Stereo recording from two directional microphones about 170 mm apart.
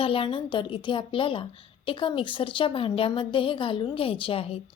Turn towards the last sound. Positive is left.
turn(degrees=35)  # may be behind; listen again after turning